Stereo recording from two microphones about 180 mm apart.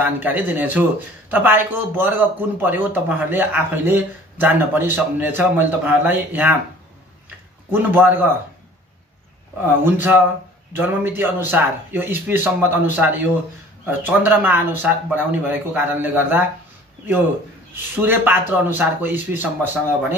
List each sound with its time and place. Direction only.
0.0 s speech: 10° right (ahead or behind)
7.7 s speech: 10° right (ahead or behind)
9.7 s speech: 10° right (ahead or behind)
17.9 s speech: 10° right (ahead or behind)